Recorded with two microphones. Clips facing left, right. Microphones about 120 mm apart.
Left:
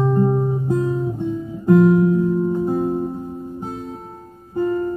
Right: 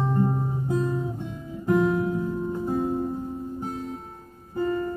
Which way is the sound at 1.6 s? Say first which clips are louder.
Left 8 dB; 15° left (ahead or behind).